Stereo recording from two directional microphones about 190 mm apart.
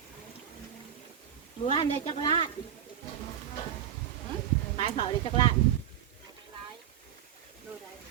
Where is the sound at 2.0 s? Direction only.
30° left (ahead or behind).